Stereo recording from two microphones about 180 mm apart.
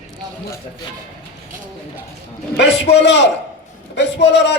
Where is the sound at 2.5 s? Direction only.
70° left (ahead or behind).